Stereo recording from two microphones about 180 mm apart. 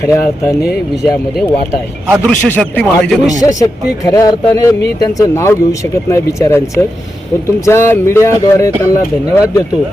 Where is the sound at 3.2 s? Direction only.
20° left (ahead or behind).